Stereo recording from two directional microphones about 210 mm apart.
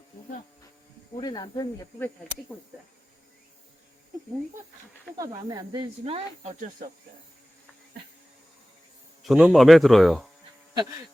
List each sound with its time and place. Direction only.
1.1 s speech: 20° left (ahead or behind)
5.1 s speech: 15° right (ahead or behind)
9.2 s speech: centre (ahead or behind)